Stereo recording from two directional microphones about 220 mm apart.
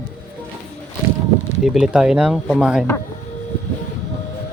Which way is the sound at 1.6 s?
5° right (ahead or behind).